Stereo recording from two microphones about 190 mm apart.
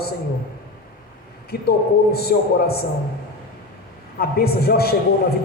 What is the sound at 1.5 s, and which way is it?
A man's voice, 55° left (ahead or behind).